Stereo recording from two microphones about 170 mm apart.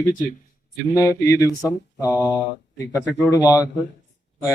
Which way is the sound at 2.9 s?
15° left (ahead or behind).